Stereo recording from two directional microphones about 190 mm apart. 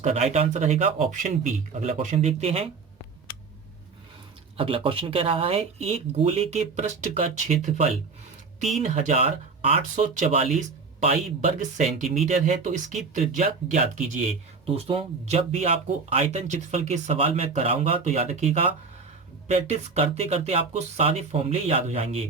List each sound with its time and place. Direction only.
0.0 s speech: 35° right (ahead or behind)
4.5 s speech: 30° right (ahead or behind)